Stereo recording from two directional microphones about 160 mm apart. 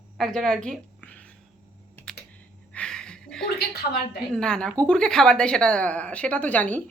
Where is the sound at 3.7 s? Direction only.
85° left.